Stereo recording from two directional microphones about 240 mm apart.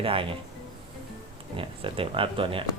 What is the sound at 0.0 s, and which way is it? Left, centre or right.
Speech, right.